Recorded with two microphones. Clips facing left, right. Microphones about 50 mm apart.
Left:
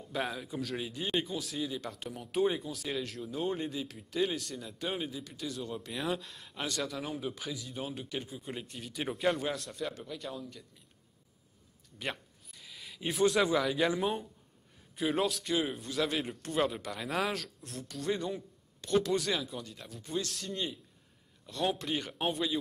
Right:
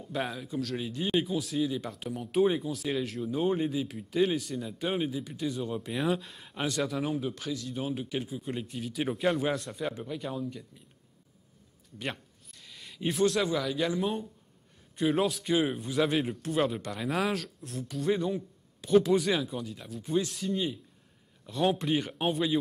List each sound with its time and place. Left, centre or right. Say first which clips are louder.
0.0 s speech: right 2 dB; centre
12.0 s a sound: right 2 dB; centre
13.2 s a man's voice: even; centre
16.2 s speech: right 3 dB; centre